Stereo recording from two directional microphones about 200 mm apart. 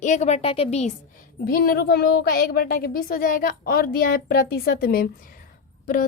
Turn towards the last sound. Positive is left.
turn(degrees=40)  # may be behind; listen again after turning